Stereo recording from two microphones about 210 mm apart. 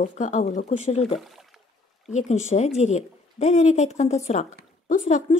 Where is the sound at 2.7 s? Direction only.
30° left (ahead or behind).